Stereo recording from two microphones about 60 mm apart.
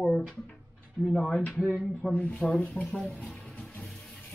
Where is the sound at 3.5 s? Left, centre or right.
Left.